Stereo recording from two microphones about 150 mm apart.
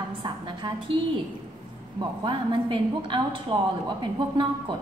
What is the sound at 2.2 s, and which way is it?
A woman's voice, 35° right (ahead or behind).